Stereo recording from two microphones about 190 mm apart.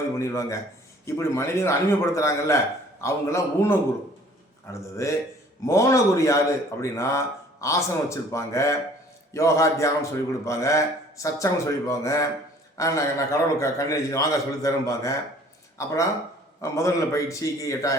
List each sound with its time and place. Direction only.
0.2 s a man's voice: 15° left (ahead or behind)